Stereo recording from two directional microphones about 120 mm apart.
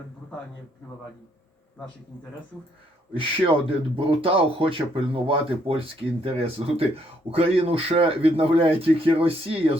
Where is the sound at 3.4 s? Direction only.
50° right (ahead or behind).